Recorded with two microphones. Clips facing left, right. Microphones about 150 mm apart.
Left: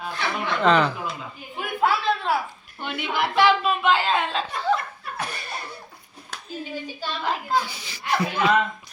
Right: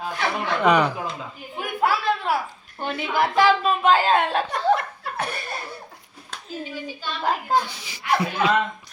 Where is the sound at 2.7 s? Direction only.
40° right (ahead or behind).